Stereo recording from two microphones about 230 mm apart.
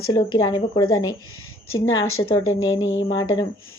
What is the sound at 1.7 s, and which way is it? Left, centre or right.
A woman's voice, left.